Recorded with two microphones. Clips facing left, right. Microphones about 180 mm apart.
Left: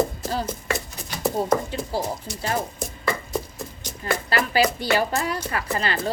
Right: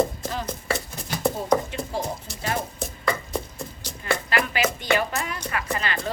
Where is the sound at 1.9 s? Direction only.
35° left (ahead or behind).